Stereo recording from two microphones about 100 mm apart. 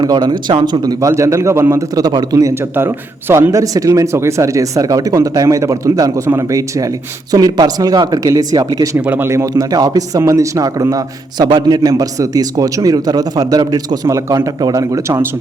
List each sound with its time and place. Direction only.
0.0 s speech: 45° right (ahead or behind)
1.0 s speech: 30° right (ahead or behind)
2.0 s speech: 40° right (ahead or behind)
2.7 s speech: 25° right (ahead or behind)
7.3 s speech: 40° right (ahead or behind)
9.0 s speech: 20° right (ahead or behind); by 11.4 s 35° right (ahead or behind)
11.4 s speech: 45° right (ahead or behind)